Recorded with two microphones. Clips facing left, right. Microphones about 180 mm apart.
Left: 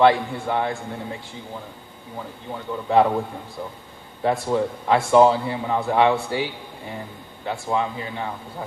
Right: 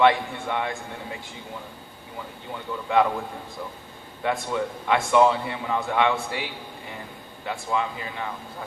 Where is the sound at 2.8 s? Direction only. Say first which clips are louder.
Left 4 dB; 30° left (ahead or behind).